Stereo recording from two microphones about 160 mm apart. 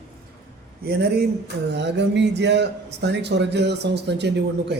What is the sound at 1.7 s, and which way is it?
A man's voice, 90° right.